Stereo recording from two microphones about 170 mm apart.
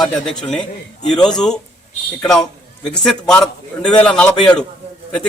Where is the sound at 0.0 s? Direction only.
5° left (ahead or behind).